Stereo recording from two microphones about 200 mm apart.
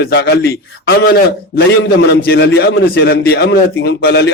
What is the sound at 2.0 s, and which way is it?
A man's voice, 55° left (ahead or behind).